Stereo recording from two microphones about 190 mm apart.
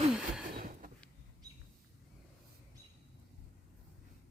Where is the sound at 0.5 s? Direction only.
50° right (ahead or behind).